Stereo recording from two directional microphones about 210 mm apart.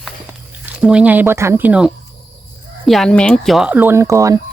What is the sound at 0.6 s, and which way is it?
Speech, 5° right (ahead or behind).